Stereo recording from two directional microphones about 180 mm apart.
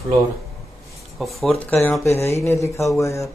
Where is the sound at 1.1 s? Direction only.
Centre (ahead or behind).